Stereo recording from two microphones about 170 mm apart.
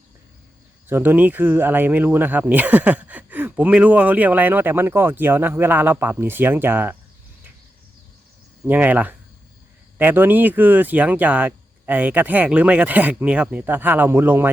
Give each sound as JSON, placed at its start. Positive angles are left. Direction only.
{"t": 0.9, "sound": "speech", "side_deg": -10}
{"t": 8.6, "sound": "speech", "side_deg": -10}